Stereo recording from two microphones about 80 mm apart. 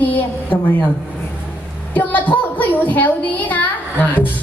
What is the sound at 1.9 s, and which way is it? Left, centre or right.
Speech, left.